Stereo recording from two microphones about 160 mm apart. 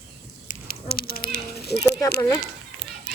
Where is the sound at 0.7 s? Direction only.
70° left (ahead or behind); by 2.0 s 90° left.